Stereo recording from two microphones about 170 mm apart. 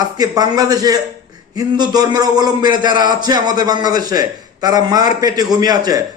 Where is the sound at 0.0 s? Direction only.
20° right (ahead or behind).